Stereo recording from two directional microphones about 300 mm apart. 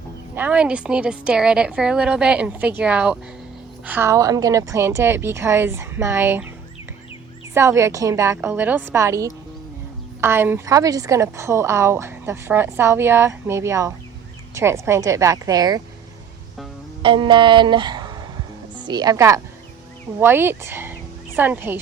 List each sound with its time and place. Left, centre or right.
0.3 s a woman's voice: centre
7.5 s a woman's voice: centre
17.0 s a woman's voice: centre